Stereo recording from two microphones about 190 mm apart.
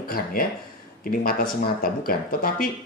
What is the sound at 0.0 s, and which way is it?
Speech, 50° left (ahead or behind).